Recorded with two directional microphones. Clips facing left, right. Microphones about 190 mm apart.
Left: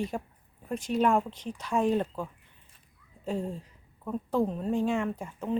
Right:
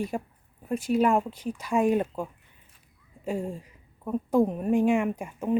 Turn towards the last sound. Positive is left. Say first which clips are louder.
# right 4 dB
turn(degrees=-15)  # may be behind; listen again after turning